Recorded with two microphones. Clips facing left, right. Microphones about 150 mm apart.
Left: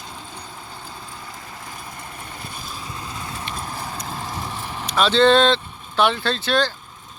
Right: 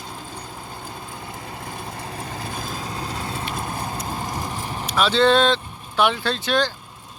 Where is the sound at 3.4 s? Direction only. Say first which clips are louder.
Right 2 dB; 15° right (ahead or behind).